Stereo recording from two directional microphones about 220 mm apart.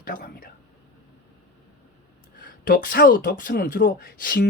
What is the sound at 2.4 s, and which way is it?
Speech, 40° left (ahead or behind).